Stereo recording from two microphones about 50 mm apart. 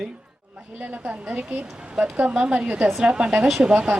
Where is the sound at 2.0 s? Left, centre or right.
Right.